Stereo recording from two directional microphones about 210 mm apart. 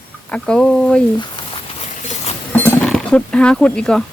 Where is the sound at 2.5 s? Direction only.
10° left (ahead or behind).